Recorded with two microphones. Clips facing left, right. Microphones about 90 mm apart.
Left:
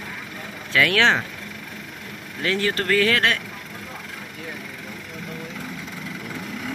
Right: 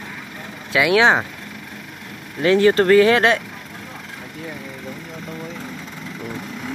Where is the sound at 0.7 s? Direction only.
15° right (ahead or behind).